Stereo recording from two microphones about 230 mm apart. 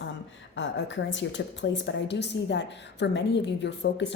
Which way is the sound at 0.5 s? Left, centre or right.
Left.